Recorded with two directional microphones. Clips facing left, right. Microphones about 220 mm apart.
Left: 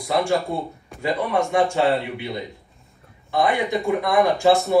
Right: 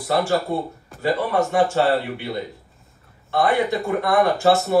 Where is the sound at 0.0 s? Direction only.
Centre (ahead or behind).